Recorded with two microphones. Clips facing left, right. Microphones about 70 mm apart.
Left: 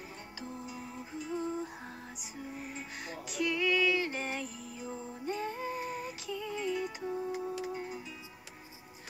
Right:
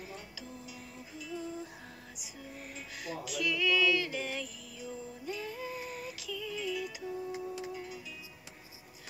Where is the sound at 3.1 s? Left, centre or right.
Left.